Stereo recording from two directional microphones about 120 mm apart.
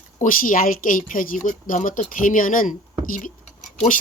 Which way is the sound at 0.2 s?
90° left.